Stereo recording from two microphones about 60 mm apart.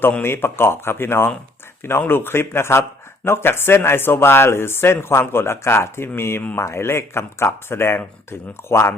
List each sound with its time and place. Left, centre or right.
0.2 s speech: left